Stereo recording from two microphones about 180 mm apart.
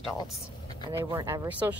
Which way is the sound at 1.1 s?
15° right (ahead or behind).